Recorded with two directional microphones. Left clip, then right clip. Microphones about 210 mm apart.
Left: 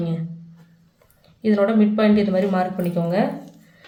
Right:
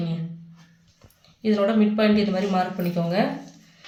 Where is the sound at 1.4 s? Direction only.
25° left (ahead or behind).